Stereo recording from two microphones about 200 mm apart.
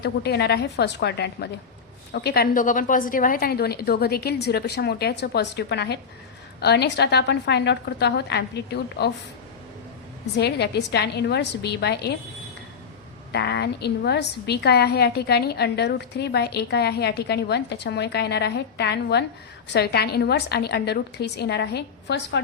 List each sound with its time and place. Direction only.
0.0 s a woman's voice: 55° left (ahead or behind)
10.3 s a woman's voice: 55° left (ahead or behind)
13.3 s a woman's voice: 55° left (ahead or behind)